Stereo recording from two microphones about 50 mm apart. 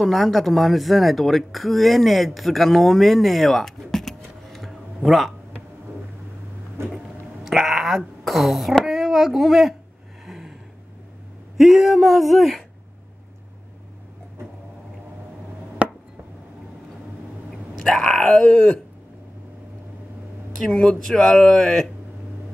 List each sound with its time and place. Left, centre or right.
0.0 s speech: centre
6.8 s a sound: right
7.4 s speech: centre
10.2 s a sound: centre
11.5 s speech: centre
15.8 s chop: right
17.5 s groan: centre
20.8 s speech: centre